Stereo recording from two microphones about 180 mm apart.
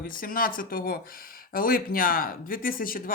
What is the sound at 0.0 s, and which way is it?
Speech, 50° left (ahead or behind).